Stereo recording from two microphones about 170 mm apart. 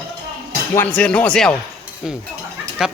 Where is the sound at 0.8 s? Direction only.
10° left (ahead or behind).